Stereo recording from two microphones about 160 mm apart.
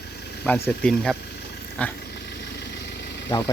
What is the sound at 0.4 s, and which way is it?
Speech, 10° left (ahead or behind).